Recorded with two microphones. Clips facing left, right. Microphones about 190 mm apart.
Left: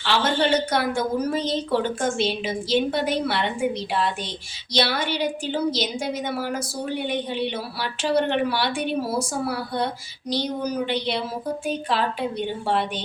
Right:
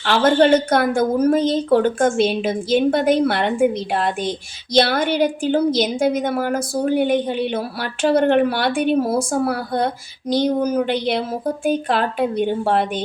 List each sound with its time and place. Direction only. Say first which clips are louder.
0.0 s a woman's voice: right 7 dB; 55° right (ahead or behind)